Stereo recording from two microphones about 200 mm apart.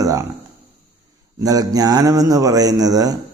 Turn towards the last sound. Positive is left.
turn(degrees=-20)  # may be behind; listen again after turning